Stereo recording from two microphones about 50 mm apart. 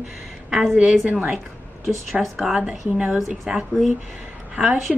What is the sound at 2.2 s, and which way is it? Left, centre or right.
Speech, centre.